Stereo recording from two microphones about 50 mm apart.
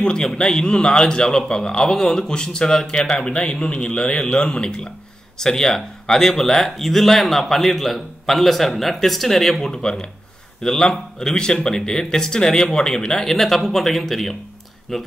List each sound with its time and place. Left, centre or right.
0.0 s speech: centre